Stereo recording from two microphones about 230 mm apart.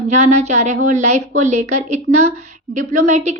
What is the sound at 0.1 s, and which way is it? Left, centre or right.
A woman's voice, right.